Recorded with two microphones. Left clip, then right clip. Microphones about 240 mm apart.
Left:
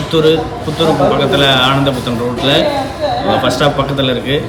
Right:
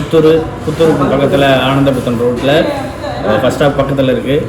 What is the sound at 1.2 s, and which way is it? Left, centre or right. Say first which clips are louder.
Speech: right 1 dB; centre.